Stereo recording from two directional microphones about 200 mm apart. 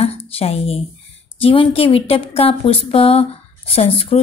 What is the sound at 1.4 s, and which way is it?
A woman's voice, 25° left (ahead or behind).